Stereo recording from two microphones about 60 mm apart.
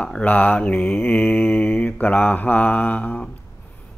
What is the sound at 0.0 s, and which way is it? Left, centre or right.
Mantra, left.